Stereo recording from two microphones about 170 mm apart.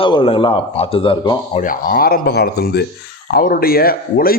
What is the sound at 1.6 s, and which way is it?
A man's voice, 55° left (ahead or behind).